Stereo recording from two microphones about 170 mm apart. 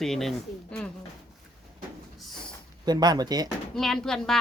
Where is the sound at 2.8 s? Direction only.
25° right (ahead or behind).